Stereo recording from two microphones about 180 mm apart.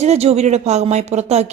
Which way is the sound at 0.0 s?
35° right (ahead or behind).